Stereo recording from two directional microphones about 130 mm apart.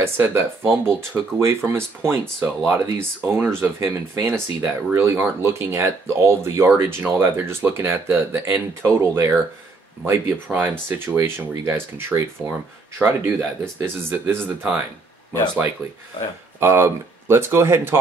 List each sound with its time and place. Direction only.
0.0 s speech: 20° right (ahead or behind)
16.5 s speech: 20° right (ahead or behind)